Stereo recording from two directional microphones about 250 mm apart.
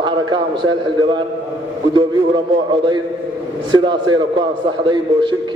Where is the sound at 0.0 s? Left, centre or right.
Centre.